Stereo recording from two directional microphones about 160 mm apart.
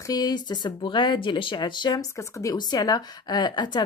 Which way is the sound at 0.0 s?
25° left (ahead or behind).